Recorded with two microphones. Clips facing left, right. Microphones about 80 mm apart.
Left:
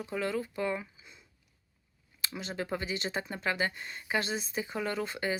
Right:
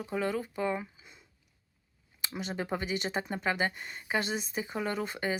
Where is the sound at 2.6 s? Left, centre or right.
Centre.